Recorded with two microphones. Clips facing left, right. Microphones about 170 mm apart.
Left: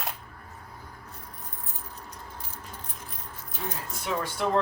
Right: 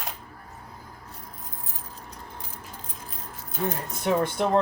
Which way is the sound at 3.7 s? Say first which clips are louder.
Right 6 dB; 55° right (ahead or behind).